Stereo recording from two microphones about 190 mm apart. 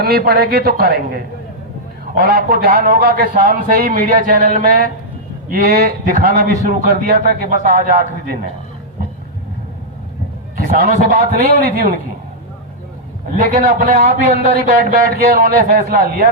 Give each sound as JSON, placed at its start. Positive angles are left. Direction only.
{"t": 0.0, "sound": "a woman's voice", "side_deg": -55}
{"t": 10.7, "sound": "a man's voice", "side_deg": -45}
{"t": 13.4, "sound": "a man's voice", "side_deg": -45}